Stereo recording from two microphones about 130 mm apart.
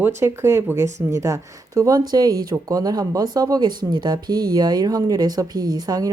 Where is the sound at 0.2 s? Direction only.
20° right (ahead or behind).